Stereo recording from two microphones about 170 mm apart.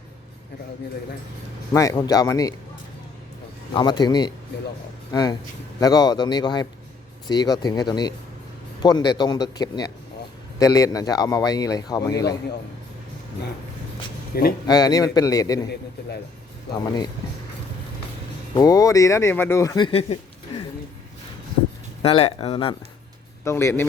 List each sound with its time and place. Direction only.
1.7 s speech: 20° left (ahead or behind)
3.7 s speech: 25° left (ahead or behind)
14.3 s speech: 65° left (ahead or behind)
14.7 s speech: 20° left (ahead or behind)
18.5 s speech: 20° left (ahead or behind)
22.0 s speech: 35° left (ahead or behind)
23.4 s speech: 15° left (ahead or behind)